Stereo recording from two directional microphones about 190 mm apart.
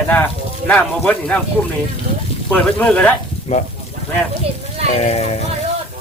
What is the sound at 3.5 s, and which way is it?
Speech, 35° left (ahead or behind).